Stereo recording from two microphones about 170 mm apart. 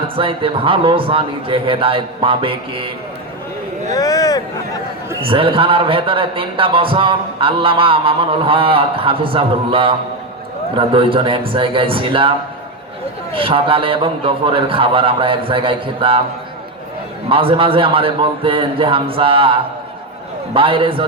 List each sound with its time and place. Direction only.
0.2 s a man's voice: 30° right (ahead or behind)
3.9 s speech: 20° left (ahead or behind)
5.2 s a man's voice: 30° right (ahead or behind)
13.3 s a man's voice: 30° right (ahead or behind)
17.2 s a man's voice: 30° right (ahead or behind)